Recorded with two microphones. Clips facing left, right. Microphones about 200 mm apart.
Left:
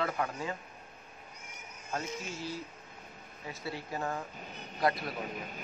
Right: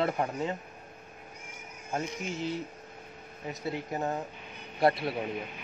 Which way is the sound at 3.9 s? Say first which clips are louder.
Right 1 dB; 20° right (ahead or behind).